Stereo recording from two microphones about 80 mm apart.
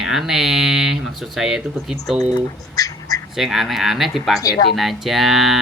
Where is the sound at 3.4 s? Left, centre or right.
Centre.